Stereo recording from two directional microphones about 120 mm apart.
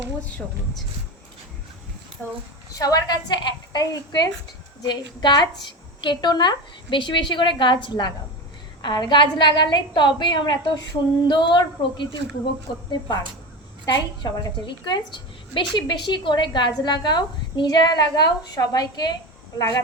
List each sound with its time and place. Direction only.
2.7 s a woman's voice: 30° left (ahead or behind)
13.8 s a woman's voice: 35° left (ahead or behind)